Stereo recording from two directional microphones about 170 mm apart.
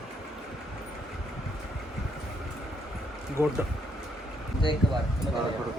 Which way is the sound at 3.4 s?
15° right (ahead or behind).